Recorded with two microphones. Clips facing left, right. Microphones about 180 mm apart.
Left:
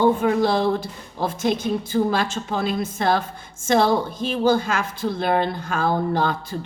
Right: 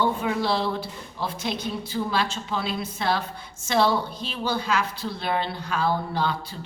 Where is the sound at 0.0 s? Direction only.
50° left (ahead or behind).